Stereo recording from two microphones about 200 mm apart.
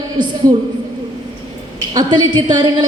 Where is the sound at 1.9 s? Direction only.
20° right (ahead or behind).